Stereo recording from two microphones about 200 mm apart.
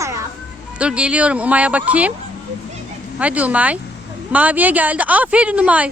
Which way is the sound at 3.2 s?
5° right (ahead or behind).